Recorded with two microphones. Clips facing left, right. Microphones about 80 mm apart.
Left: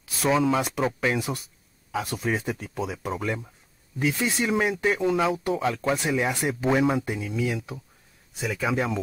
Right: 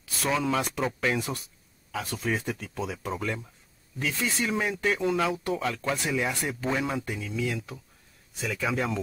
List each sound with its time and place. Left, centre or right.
0.2 s speech: centre